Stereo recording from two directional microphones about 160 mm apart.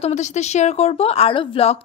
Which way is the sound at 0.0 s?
45° left (ahead or behind).